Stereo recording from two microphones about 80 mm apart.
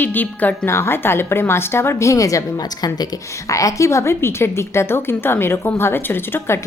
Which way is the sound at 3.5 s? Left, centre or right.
Left.